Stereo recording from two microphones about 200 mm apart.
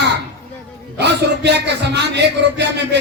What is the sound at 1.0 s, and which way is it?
Speech, 60° right (ahead or behind).